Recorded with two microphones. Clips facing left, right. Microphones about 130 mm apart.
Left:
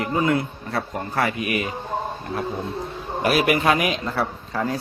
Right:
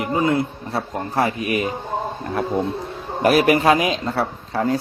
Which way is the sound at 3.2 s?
40° right (ahead or behind).